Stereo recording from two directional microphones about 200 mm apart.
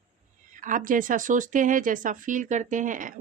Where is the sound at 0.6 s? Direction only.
40° right (ahead or behind).